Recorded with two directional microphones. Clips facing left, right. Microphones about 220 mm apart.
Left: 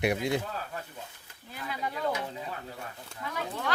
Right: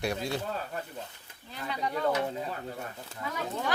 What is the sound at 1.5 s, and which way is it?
Speech, 5° left (ahead or behind).